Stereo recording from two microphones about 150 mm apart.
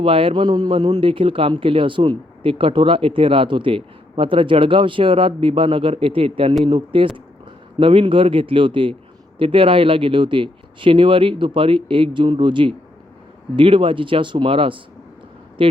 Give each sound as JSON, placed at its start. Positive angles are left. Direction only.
{"t": 0.0, "sound": "a man's voice", "side_deg": -40}